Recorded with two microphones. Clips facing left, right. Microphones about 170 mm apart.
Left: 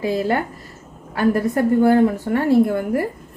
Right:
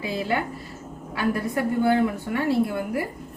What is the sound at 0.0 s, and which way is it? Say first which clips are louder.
A woman's voice: left 6 dB; 45° left (ahead or behind).